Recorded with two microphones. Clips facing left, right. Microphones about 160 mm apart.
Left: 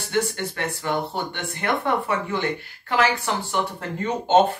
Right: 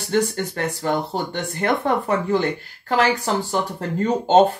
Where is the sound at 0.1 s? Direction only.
40° right (ahead or behind).